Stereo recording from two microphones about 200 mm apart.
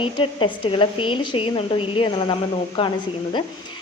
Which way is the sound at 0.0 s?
25° left (ahead or behind).